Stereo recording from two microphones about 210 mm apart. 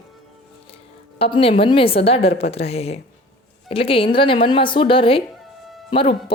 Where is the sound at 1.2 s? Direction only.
25° left (ahead or behind).